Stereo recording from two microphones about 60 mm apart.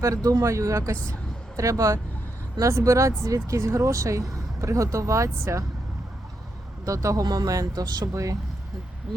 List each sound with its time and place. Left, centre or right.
0.0 s speech: right
6.8 s speech: right